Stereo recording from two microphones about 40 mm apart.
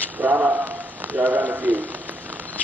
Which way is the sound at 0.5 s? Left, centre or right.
Right.